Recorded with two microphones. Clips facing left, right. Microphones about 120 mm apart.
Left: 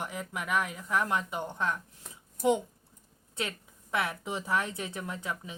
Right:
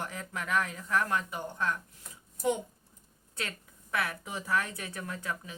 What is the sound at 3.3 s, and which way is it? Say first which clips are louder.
Speech: left 3 dB; 20° left (ahead or behind).